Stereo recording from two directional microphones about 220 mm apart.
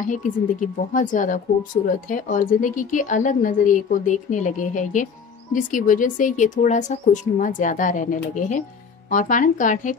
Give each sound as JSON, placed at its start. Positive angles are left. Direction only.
{"t": 0.0, "sound": "speech", "side_deg": 35}